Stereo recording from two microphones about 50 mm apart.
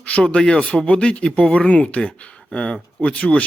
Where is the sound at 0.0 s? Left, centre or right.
Left.